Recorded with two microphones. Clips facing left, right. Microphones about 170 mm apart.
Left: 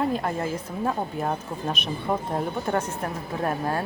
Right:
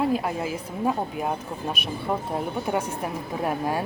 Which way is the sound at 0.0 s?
5° right (ahead or behind).